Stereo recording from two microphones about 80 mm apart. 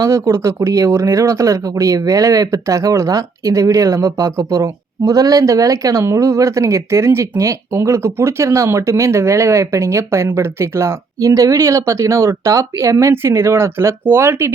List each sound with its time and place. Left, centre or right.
0.0 s speech: right